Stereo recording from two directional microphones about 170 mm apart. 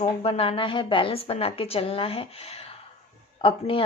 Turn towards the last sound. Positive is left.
turn(degrees=30)  # may be behind; listen again after turning